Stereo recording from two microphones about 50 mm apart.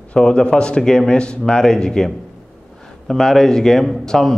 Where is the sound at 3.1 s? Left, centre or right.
Centre.